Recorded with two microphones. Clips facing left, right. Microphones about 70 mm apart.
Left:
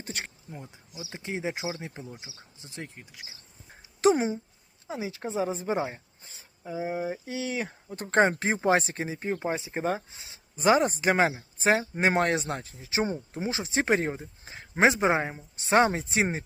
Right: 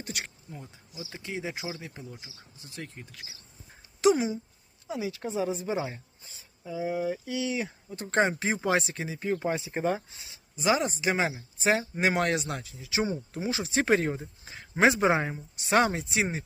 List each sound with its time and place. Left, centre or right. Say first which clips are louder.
0.0 s speech: even; left; by 3.2 s centre
4.0 s speech: left 1 dB; left
9.3 s speech: right 3 dB; left
10.6 s speech: left 4 dB; left; by 15.4 s centre
15.4 s speech: left 2 dB; left